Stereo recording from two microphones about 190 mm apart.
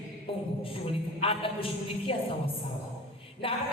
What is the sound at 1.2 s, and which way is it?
Speech, 30° left (ahead or behind).